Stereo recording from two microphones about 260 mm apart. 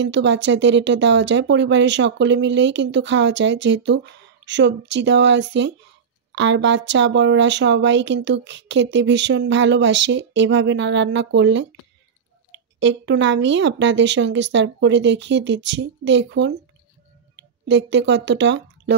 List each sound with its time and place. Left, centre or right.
0.0 s speech: right
12.7 s speech: right